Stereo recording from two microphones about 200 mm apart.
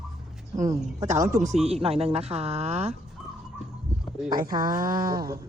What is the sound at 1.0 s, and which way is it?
Speech, 40° right (ahead or behind).